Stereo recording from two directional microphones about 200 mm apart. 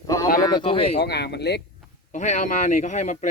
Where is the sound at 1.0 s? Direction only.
55° left (ahead or behind).